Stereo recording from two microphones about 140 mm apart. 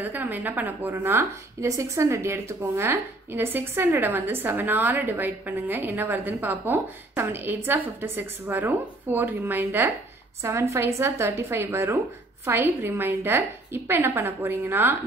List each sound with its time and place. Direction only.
0.0 s a woman's voice: 10° right (ahead or behind)